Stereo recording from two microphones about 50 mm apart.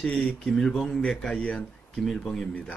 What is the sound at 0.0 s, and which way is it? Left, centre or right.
A man's voice, centre.